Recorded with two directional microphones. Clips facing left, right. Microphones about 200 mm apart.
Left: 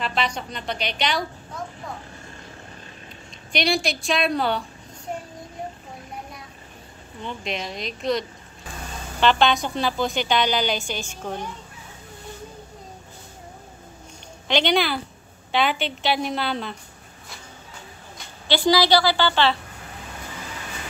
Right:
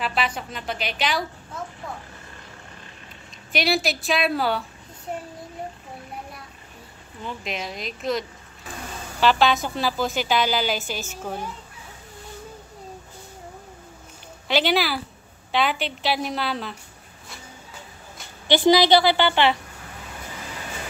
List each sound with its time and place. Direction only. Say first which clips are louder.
0.0 s a woman's voice: even; 5° right (ahead or behind)
3.5 s a woman's voice: even; 5° right (ahead or behind)
7.2 s a woman's voice: left 1 dB; 5° right (ahead or behind)
14.5 s a woman's voice: left 1 dB; 5° right (ahead or behind)
18.5 s a woman's voice: right 2 dB; 20° right (ahead or behind)